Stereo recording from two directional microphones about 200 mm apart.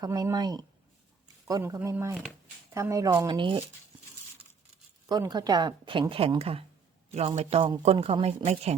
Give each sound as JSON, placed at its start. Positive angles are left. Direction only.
{"t": 0.0, "sound": "a woman's voice", "side_deg": -20}
{"t": 5.0, "sound": "a woman's voice", "side_deg": -20}